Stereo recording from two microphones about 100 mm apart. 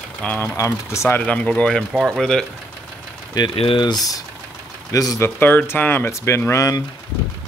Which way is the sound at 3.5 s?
65° left (ahead or behind).